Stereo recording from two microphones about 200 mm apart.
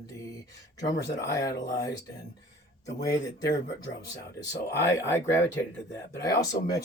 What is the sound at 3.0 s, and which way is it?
Speech, 20° left (ahead or behind).